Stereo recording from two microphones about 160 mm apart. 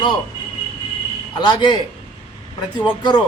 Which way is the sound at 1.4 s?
25° left (ahead or behind).